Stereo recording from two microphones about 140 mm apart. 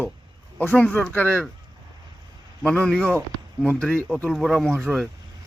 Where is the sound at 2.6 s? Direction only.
5° left (ahead or behind).